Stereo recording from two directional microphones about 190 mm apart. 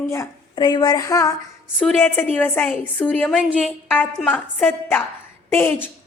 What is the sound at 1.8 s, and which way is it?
A woman's voice, 10° left (ahead or behind).